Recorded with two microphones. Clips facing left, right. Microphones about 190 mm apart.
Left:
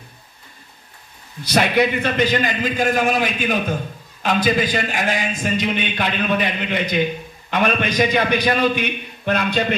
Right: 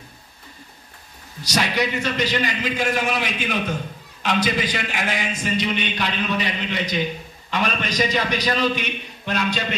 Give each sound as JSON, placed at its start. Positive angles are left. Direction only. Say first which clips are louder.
{"t": 1.4, "sound": "a man's voice", "louder": "left 6 dB", "side_deg": 55}